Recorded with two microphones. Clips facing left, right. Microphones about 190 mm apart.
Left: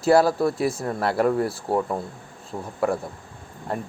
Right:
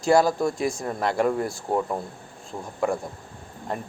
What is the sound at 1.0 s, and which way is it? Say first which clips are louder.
Speech: left 2 dB; 5° left (ahead or behind).